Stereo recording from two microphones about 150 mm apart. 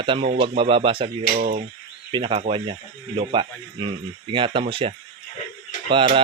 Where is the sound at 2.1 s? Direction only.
35° right (ahead or behind).